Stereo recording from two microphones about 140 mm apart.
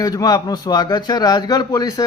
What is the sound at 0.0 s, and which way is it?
A man's voice, 25° left (ahead or behind).